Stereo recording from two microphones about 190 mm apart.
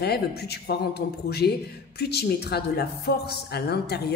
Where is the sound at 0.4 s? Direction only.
60° left (ahead or behind).